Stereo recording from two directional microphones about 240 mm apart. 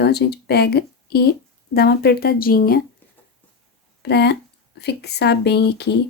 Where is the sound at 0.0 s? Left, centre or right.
Left.